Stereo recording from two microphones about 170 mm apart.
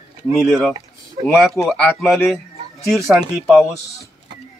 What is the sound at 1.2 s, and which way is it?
A man's voice, centre (ahead or behind).